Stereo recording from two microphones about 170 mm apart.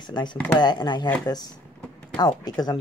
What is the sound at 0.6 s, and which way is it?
Speech, 25° left (ahead or behind).